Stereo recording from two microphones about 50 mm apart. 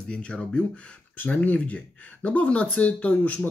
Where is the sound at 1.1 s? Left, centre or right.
Left.